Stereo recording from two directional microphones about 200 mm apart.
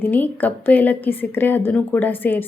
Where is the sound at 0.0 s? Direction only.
10° left (ahead or behind).